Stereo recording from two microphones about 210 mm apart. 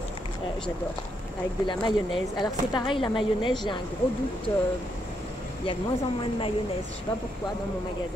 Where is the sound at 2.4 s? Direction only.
20° left (ahead or behind).